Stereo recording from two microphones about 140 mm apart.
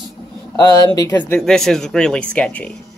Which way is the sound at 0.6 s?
25° left (ahead or behind).